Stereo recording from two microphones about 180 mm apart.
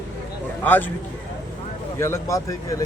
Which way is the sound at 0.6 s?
10° left (ahead or behind).